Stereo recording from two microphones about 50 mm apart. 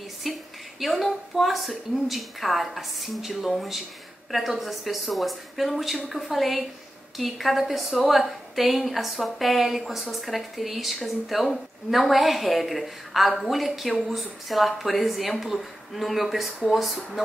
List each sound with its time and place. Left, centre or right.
0.2 s a woman's voice: centre